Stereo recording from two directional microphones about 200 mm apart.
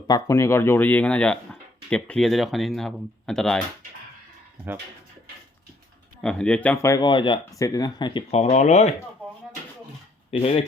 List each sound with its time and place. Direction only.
0.1 s speech: 15° left (ahead or behind)
6.2 s speech: 5° left (ahead or behind); by 9.0 s 35° left (ahead or behind)
10.3 s speech: 30° left (ahead or behind)